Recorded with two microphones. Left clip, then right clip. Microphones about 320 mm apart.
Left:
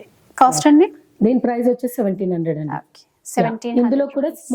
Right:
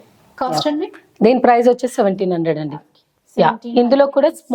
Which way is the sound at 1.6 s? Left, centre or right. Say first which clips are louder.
Right 5 dB; right.